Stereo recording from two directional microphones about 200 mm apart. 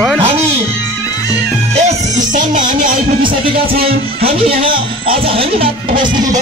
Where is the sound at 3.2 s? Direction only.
25° right (ahead or behind).